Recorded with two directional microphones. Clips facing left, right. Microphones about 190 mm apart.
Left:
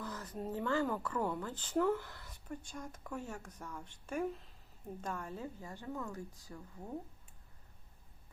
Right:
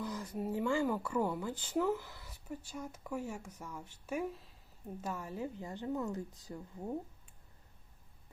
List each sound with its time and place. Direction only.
0.0 s a woman's voice: 10° right (ahead or behind)